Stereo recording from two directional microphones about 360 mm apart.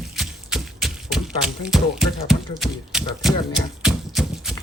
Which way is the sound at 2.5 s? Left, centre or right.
Centre.